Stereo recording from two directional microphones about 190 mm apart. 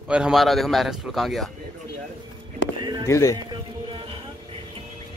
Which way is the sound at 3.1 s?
15° left (ahead or behind).